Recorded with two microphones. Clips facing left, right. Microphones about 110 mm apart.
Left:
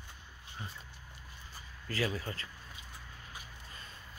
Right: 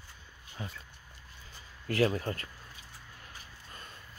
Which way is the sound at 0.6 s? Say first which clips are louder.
Right 5 dB; 90° right.